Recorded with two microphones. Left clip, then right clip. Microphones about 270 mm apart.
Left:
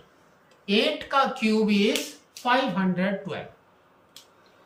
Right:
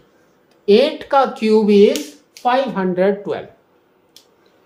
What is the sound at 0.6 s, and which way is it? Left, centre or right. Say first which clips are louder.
Speech: right 11 dB; centre.